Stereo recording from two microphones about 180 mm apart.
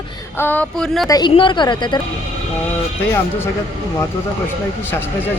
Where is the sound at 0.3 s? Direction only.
10° left (ahead or behind).